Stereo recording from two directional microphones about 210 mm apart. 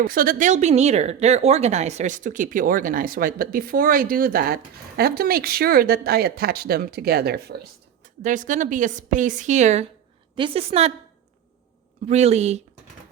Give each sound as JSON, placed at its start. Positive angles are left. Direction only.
{"t": 0.0, "sound": "speech", "side_deg": -40}
{"t": 8.2, "sound": "a woman's voice", "side_deg": -35}
{"t": 12.0, "sound": "a woman's voice", "side_deg": -30}